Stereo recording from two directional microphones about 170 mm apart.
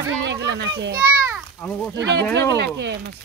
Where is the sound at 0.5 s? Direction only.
90° right.